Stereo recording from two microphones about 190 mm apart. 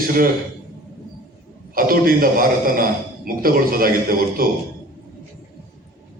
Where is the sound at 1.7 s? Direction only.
50° right (ahead or behind).